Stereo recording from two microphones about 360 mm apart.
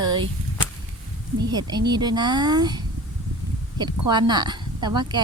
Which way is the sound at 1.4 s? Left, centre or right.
Centre.